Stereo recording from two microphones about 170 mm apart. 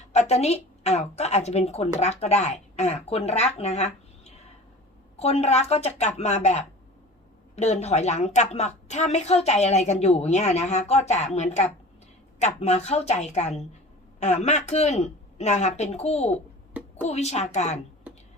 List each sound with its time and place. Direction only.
0.1 s a woman's voice: 40° left (ahead or behind)
5.1 s a woman's voice: 35° left (ahead or behind)